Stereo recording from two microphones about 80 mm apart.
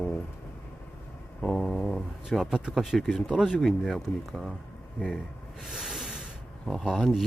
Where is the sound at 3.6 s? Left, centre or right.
Centre.